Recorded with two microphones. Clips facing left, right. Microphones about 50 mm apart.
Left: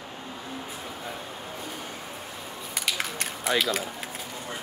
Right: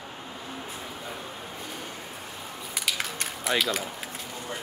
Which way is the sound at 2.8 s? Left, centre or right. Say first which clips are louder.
Left 1 dB; centre.